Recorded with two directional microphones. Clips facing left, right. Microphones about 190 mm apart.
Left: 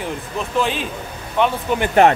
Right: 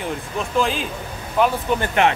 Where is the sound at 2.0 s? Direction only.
35° left (ahead or behind).